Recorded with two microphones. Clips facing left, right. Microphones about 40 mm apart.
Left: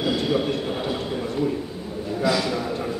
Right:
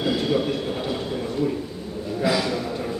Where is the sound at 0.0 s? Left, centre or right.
Centre.